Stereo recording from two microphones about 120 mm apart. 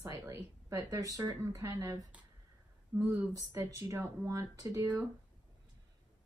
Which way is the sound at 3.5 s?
25° right (ahead or behind).